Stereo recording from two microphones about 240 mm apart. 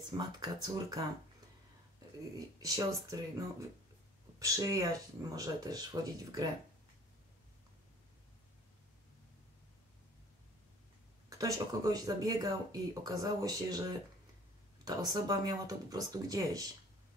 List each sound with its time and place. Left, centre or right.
0.1 s speech: centre
2.3 s speech: centre
11.2 s speech: centre